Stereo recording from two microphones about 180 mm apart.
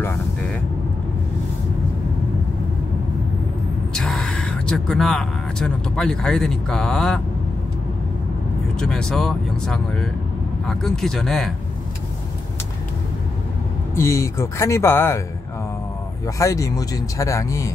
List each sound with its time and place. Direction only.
3.9 s speech: centre (ahead or behind)
8.7 s speech: 5° left (ahead or behind)
13.9 s speech: 15° left (ahead or behind)
16.3 s speech: 20° left (ahead or behind)